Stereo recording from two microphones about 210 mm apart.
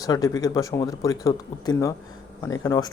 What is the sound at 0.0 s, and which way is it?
Speech, 15° left (ahead or behind).